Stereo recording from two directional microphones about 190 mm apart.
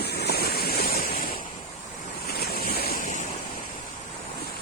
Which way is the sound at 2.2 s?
55° left (ahead or behind).